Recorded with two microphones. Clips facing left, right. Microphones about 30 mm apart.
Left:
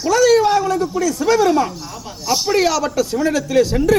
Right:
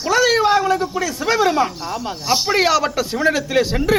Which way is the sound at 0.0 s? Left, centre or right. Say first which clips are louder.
Left 2 dB; right.